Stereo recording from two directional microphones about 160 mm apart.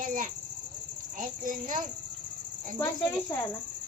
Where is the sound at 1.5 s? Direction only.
55° right (ahead or behind).